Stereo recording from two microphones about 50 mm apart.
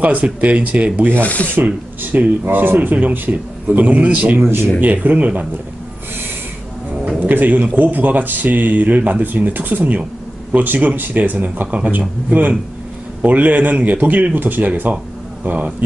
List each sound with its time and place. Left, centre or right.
0.0 s speech: right
1.2 s rub: left
1.5 s speech: right
4.4 s speech: right
4.7 s speech: right
7.2 s speech: right